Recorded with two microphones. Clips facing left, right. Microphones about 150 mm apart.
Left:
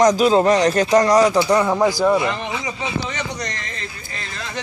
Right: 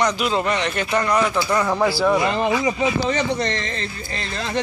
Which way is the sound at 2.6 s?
30° right (ahead or behind).